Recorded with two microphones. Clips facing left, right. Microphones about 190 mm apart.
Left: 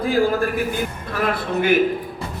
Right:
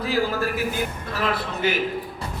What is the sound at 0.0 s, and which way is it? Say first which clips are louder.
A man's voice: left 5 dB; 50° left (ahead or behind).